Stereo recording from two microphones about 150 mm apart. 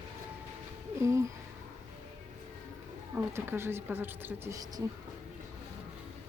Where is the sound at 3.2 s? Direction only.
15° right (ahead or behind).